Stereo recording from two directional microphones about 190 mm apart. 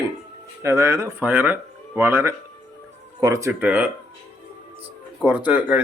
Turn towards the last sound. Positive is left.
turn(degrees=-5)  # may be behind; listen again after turning